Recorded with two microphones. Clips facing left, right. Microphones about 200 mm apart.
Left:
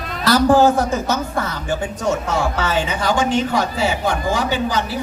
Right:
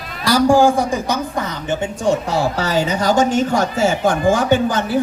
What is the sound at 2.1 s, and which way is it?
A woman's voice, 35° right (ahead or behind).